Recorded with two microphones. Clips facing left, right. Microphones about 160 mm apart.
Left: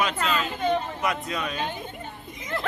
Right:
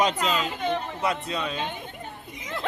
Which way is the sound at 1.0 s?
30° right (ahead or behind).